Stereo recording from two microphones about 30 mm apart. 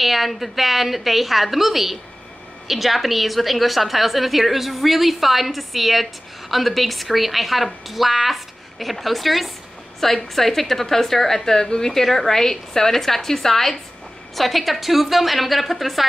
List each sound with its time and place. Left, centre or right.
0.0 s a woman's voice: centre
11.4 s a woman's voice: left
12.0 s a woman's voice: centre
14.3 s a woman's voice: centre